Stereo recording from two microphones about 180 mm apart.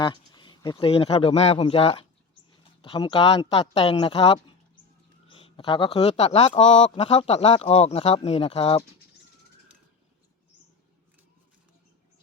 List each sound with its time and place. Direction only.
0.0 s speech: 25° left (ahead or behind)